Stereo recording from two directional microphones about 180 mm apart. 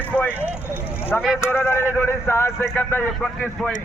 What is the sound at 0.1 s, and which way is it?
Vehicle, 10° left (ahead or behind).